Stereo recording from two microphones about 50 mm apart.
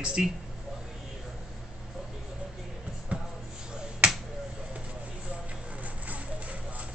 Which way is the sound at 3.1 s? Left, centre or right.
Right.